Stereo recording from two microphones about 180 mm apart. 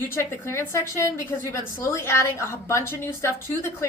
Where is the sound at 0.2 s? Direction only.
15° left (ahead or behind).